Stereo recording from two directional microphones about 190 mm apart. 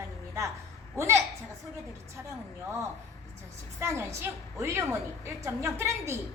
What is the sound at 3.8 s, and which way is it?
A woman's voice, 15° right (ahead or behind).